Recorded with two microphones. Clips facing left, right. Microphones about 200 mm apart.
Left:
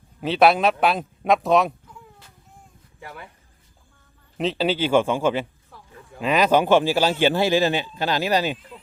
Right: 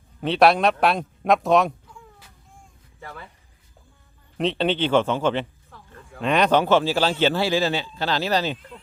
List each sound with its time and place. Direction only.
0.2 s speech: centre (ahead or behind)
3.0 s speech: 15° left (ahead or behind)
4.4 s speech: 5° left (ahead or behind)